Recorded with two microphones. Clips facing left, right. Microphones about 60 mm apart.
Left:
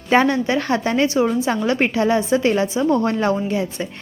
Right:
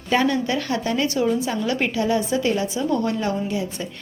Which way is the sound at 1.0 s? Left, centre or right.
Left.